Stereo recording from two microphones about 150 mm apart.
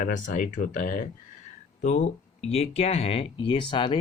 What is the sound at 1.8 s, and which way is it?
Speech, 50° left (ahead or behind).